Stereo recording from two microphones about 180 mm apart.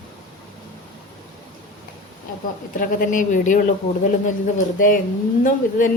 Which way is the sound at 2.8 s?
50° left (ahead or behind).